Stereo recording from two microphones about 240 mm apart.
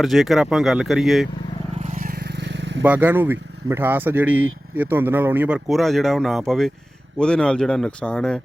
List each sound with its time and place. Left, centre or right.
0.0 s speech: centre
2.8 s speech: centre